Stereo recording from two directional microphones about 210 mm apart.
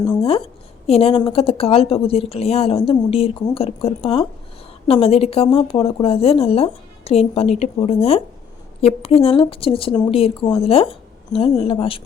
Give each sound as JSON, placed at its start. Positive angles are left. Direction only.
{"t": 0.2, "sound": "a woman's voice", "side_deg": 25}